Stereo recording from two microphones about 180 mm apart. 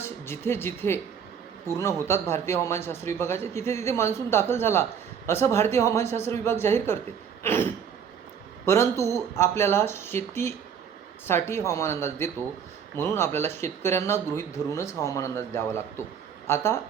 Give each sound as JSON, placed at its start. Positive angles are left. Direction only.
{"t": 0.0, "sound": "speech", "side_deg": 15}
{"t": 7.4, "sound": "throat clearing", "side_deg": 15}
{"t": 8.6, "sound": "speech", "side_deg": 15}